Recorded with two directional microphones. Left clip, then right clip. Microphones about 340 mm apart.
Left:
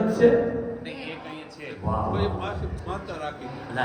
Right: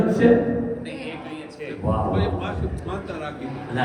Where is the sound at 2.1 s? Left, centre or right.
Left.